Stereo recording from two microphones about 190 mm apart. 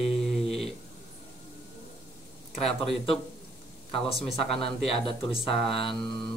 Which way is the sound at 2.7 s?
30° left (ahead or behind).